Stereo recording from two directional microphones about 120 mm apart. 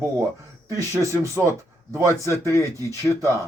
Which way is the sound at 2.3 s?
25° left (ahead or behind).